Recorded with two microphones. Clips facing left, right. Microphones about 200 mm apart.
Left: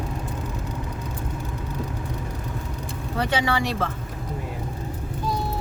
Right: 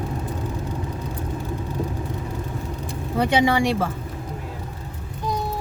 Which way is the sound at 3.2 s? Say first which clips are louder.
Right 5 dB; 15° right (ahead or behind).